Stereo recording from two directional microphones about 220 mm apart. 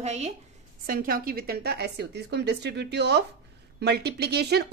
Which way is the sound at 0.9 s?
40° right (ahead or behind).